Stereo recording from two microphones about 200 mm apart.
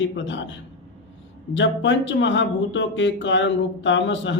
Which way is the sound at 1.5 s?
65° left (ahead or behind).